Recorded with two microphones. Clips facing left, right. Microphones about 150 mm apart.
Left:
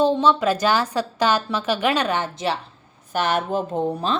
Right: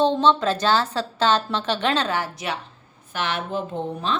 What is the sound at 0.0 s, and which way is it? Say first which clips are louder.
A woman's voice: left 1 dB; 10° left (ahead or behind).